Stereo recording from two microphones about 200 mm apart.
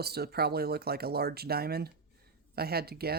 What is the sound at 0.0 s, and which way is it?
Speech, 50° right (ahead or behind).